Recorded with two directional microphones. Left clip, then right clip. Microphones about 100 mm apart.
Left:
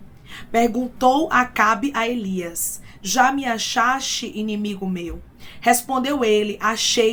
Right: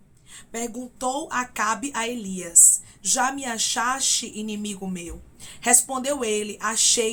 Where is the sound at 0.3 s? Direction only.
20° right (ahead or behind).